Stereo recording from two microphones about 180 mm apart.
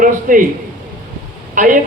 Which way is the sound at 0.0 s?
50° right (ahead or behind).